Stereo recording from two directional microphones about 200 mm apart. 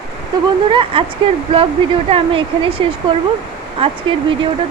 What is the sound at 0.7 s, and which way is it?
Speech, 25° right (ahead or behind).